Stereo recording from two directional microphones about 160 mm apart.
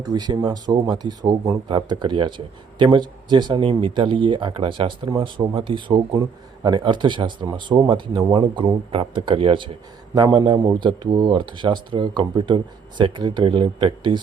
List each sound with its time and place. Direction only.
0.0 s speech: 25° right (ahead or behind)